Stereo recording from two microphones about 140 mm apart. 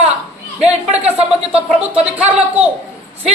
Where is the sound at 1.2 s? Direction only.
45° right (ahead or behind).